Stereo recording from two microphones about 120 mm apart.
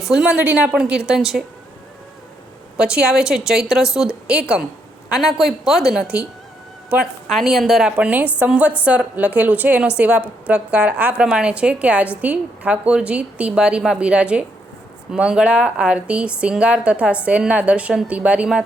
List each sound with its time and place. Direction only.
0.0 s a woman's voice: 5° right (ahead or behind)
2.7 s a woman's voice: 10° right (ahead or behind)